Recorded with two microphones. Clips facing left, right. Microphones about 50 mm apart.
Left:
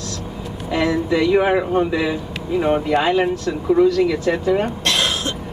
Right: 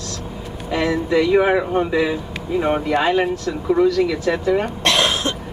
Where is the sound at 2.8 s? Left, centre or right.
Centre.